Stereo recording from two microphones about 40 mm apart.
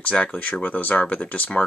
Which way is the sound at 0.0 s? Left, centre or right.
Left.